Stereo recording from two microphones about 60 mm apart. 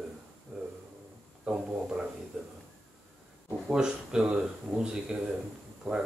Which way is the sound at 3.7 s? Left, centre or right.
Centre.